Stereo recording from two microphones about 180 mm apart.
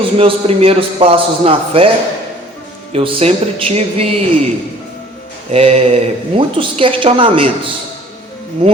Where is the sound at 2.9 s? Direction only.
35° right (ahead or behind).